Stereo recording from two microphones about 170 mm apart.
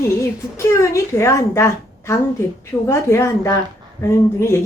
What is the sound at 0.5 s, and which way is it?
A woman's voice, 15° left (ahead or behind).